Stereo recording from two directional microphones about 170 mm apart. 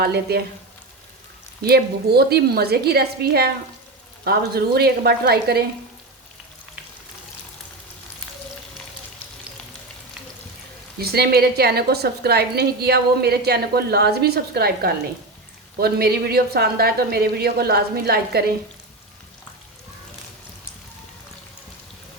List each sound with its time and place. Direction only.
0.0 s a woman's voice: 70° right (ahead or behind)
1.6 s a woman's voice: 70° right (ahead or behind)
10.9 s a woman's voice: 65° right (ahead or behind)